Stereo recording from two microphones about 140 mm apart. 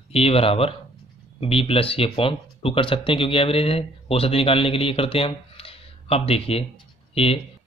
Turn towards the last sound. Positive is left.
turn(degrees=45)  # may be behind; listen again after turning